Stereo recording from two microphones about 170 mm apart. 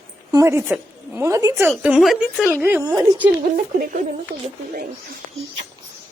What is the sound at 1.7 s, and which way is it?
A woman's voice, 5° right (ahead or behind).